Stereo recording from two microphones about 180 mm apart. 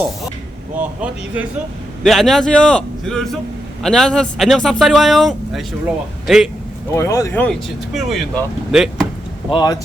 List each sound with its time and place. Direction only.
0.8 s speech: 10° right (ahead or behind)
2.0 s a man's voice: centre (ahead or behind)
6.9 s speech: 15° left (ahead or behind)
7.9 s speech: centre (ahead or behind)
9.5 s speech: 25° left (ahead or behind)